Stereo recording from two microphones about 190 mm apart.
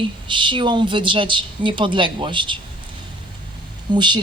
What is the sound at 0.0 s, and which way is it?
Speech, 25° right (ahead or behind).